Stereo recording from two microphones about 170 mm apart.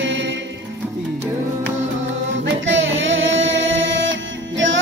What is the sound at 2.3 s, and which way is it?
Music, 90° right.